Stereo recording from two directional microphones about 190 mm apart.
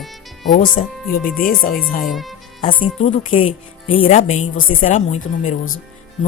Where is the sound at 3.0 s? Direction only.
35° left (ahead or behind).